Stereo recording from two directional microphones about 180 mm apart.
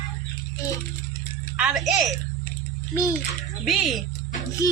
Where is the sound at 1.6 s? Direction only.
5° right (ahead or behind).